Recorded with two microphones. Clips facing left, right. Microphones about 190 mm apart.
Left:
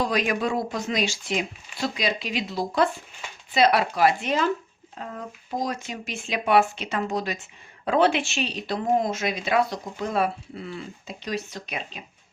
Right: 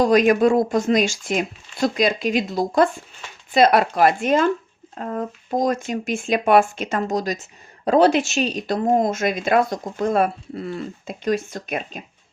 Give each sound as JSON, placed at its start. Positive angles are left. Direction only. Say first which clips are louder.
{"t": 0.0, "sound": "speech", "louder": "right 9 dB", "side_deg": -45}